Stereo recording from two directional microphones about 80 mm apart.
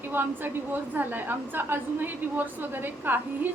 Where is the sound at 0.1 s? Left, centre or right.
Right.